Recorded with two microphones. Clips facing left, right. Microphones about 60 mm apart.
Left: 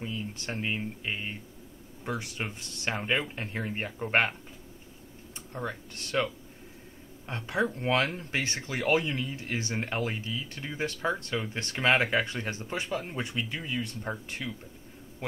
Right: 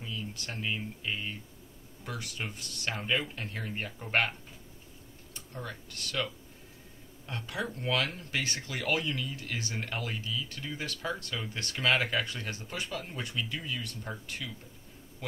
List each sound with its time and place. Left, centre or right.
0.0 s speech: left
5.5 s speech: left